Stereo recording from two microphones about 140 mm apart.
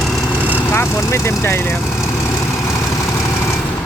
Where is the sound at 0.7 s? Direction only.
20° left (ahead or behind).